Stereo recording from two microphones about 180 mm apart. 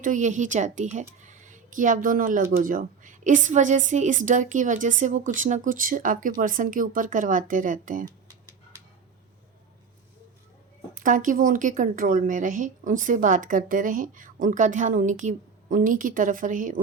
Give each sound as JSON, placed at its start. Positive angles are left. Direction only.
{"t": 0.0, "sound": "speech", "side_deg": -45}
{"t": 10.9, "sound": "speech", "side_deg": -45}